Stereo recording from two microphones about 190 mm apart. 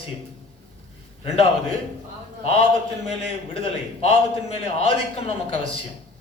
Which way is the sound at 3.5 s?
30° left (ahead or behind).